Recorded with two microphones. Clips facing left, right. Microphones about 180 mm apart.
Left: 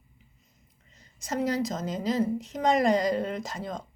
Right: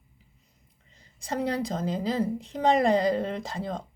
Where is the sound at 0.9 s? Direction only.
30° right (ahead or behind).